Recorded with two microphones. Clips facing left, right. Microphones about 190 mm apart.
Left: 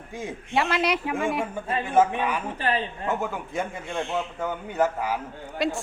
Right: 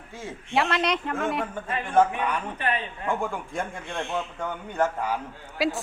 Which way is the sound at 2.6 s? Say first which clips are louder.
Left 2 dB; 30° left (ahead or behind).